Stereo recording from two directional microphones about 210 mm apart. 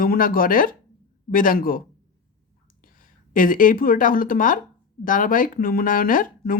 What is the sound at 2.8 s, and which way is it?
Speech, 40° left (ahead or behind).